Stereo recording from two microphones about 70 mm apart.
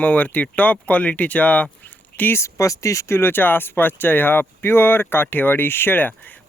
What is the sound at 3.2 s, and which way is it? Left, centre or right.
Speech, left.